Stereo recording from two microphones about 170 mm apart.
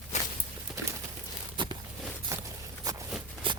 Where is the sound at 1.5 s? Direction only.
30° right (ahead or behind).